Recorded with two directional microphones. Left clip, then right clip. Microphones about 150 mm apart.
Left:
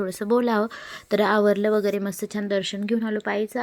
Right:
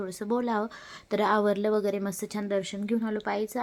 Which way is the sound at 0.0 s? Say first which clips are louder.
Left 8 dB; 35° left (ahead or behind).